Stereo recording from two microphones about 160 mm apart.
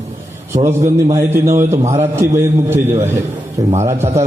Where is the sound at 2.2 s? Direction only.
15° right (ahead or behind).